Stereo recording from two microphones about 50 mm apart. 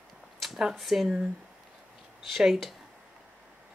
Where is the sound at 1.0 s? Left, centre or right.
Centre.